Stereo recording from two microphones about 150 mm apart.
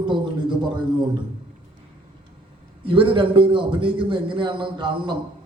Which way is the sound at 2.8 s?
35° right (ahead or behind).